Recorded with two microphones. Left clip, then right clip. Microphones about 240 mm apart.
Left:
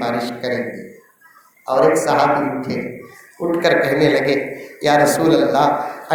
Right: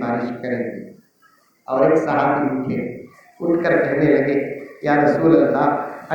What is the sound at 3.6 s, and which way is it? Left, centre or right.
A man's voice, left.